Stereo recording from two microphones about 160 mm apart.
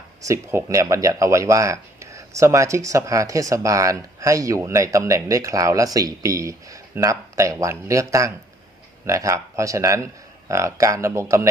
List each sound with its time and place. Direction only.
0.2 s speech: 20° right (ahead or behind)